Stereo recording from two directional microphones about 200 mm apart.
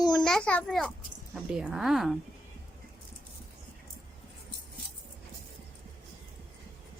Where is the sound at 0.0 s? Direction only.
20° left (ahead or behind).